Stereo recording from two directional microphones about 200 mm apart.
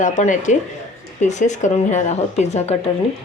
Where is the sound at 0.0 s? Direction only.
40° left (ahead or behind).